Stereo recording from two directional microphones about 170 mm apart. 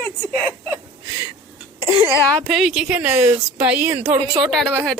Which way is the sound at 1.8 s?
25° left (ahead or behind).